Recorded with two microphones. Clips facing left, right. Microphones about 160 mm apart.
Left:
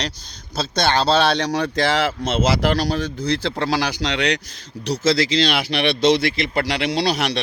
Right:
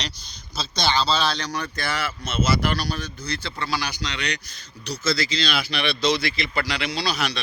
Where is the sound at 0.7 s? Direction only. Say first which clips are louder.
Left 5 dB; 60° left (ahead or behind); by 4.4 s 90° left.